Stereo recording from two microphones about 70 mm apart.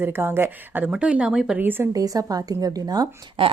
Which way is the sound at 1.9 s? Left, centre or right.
Right.